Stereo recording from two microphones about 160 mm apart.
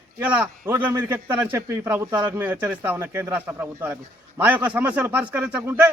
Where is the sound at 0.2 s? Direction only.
10° right (ahead or behind).